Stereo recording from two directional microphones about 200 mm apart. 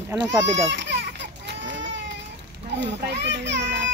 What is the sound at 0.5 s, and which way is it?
Speech, 65° right (ahead or behind).